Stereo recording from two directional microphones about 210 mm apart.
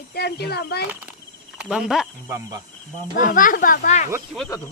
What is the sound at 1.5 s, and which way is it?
Speech, centre (ahead or behind).